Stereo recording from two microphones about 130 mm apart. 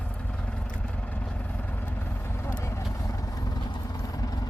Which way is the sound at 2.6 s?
20° left (ahead or behind).